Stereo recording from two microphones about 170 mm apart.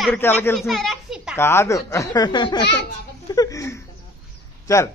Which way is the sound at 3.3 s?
20° left (ahead or behind).